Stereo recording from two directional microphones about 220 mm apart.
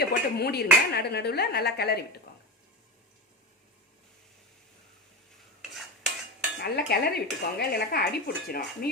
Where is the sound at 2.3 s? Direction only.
45° left (ahead or behind).